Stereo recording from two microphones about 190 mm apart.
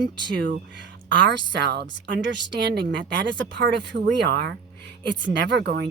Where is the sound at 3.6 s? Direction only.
70° right (ahead or behind).